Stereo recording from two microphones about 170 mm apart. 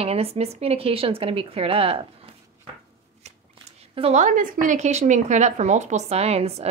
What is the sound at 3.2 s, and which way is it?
Shuffling cards, 40° right (ahead or behind).